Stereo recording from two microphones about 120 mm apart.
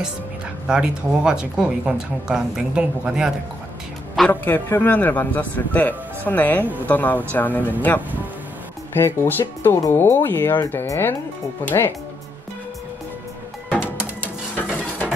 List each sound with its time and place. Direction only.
0.7 s speech: 5° right (ahead or behind)
4.3 s speech: 15° left (ahead or behind)
9.0 s speech: 20° left (ahead or behind)
14.5 s dishes: 10° left (ahead or behind)